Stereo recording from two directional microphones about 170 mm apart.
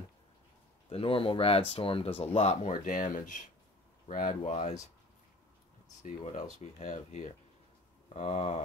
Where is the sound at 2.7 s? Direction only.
50° left (ahead or behind).